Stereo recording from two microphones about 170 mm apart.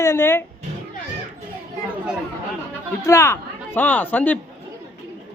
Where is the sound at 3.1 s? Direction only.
15° left (ahead or behind).